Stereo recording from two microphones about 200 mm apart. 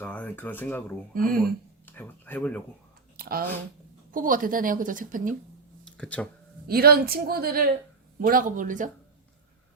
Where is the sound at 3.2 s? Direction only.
50° right (ahead or behind).